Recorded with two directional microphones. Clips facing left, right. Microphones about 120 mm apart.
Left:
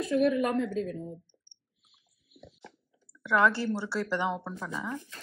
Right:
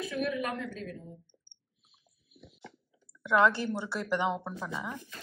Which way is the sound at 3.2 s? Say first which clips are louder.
Even; 20° right (ahead or behind).